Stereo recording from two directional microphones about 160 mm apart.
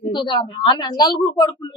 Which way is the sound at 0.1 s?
30° left (ahead or behind).